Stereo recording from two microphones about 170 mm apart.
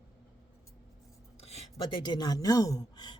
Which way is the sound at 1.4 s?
35° left (ahead or behind).